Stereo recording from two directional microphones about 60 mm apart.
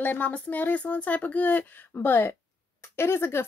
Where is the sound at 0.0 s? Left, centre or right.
Left.